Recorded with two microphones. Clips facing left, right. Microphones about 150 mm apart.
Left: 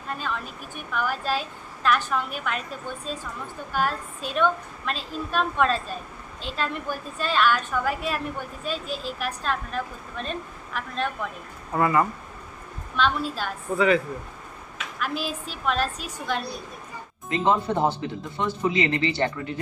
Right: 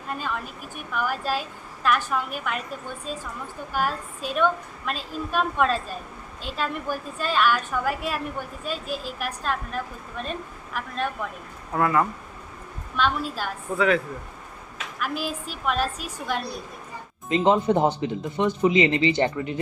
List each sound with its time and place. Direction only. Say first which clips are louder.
0.1 s a woman's voice: right 1 dB; 10° right (ahead or behind)
3.7 s a woman's voice: even; 10° right (ahead or behind)
13.0 s a woman's voice: even; 10° right (ahead or behind)
13.7 s a woman's voice: left 1 dB; centre (ahead or behind); by 19.5 s 20° right (ahead or behind)